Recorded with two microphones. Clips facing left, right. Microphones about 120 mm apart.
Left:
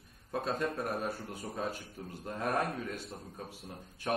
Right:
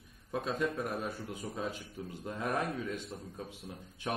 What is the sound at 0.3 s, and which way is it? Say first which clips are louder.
Speech: even; 40° left (ahead or behind).